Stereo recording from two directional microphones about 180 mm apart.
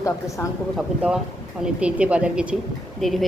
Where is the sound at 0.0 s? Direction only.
15° left (ahead or behind).